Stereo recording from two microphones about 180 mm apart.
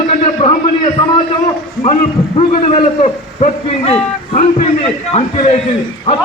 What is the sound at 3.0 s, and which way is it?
A man's voice, 35° left (ahead or behind).